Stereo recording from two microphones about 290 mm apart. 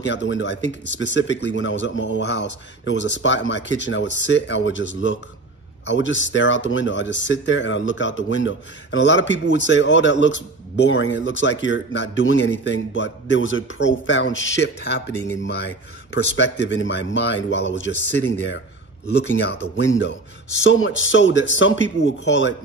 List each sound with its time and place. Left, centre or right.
0.0 s speech: left
16.1 s speech: left